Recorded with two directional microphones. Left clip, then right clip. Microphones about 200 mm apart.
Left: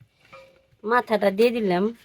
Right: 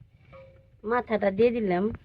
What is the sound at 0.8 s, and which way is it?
Speech, 50° left (ahead or behind).